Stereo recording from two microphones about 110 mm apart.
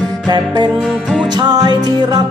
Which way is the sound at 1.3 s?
40° right (ahead or behind).